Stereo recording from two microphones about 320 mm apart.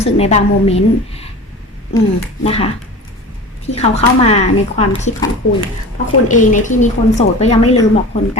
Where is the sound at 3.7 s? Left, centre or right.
Centre.